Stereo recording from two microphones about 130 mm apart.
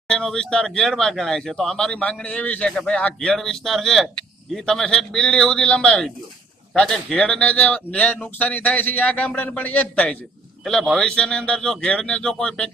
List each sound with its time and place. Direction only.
0.1 s a man's voice: 5° left (ahead or behind)
10.6 s speech: centre (ahead or behind)